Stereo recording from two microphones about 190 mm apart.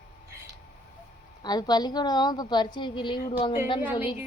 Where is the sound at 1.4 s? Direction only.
20° left (ahead or behind).